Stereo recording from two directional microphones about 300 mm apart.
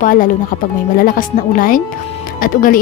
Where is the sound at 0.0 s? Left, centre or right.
Left.